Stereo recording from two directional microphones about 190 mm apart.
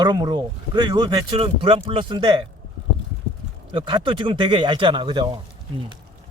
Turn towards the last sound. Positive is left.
turn(degrees=-25)  # may be behind; listen again after turning